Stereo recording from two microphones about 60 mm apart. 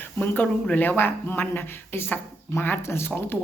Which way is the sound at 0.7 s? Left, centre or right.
Left.